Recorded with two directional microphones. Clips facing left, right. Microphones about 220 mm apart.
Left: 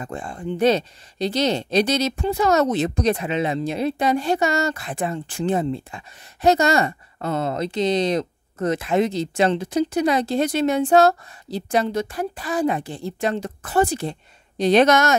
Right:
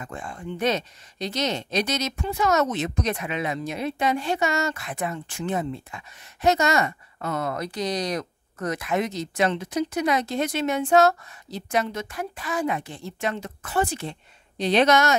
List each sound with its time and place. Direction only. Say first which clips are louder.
0.0 s speech: left 5 dB; 30° left (ahead or behind)